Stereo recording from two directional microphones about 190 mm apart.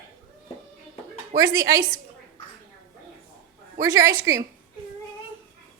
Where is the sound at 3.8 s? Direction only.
15° right (ahead or behind).